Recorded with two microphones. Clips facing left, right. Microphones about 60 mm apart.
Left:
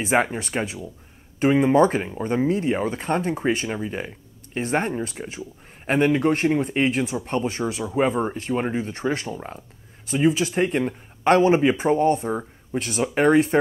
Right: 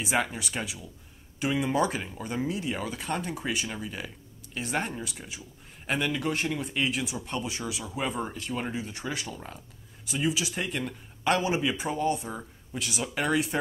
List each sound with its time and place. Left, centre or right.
0.0 s speech: left